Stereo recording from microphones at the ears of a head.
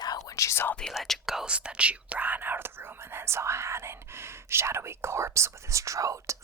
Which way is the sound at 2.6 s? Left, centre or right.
Right.